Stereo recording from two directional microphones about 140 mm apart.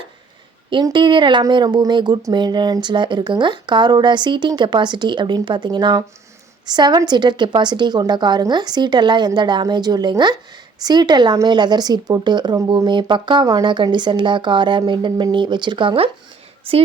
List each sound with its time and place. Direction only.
0.7 s a woman's voice: 30° right (ahead or behind)